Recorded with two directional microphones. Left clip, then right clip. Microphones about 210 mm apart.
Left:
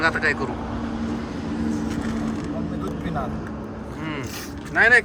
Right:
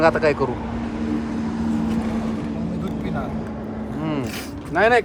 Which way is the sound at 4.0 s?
15° right (ahead or behind).